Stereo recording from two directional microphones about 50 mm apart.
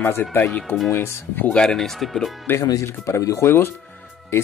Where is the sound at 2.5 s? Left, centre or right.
Left.